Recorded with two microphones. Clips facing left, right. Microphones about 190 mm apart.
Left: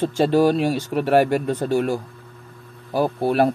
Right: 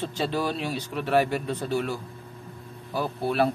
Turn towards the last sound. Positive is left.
turn(degrees=45)  # may be behind; listen again after turning